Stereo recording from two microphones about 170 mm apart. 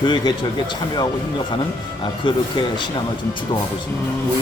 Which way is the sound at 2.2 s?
30° left (ahead or behind).